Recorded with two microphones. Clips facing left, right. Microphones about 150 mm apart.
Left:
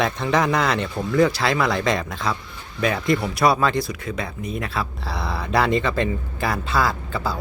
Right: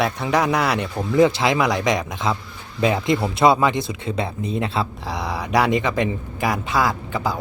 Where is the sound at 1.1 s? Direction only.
20° right (ahead or behind).